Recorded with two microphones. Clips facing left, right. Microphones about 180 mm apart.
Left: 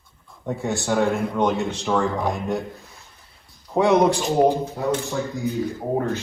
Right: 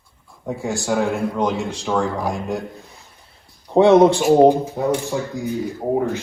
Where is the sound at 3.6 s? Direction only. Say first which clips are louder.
Right 6 dB; 30° right (ahead or behind).